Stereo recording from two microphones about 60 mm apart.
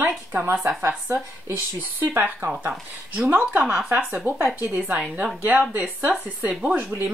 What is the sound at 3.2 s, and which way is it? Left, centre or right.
Speech, right.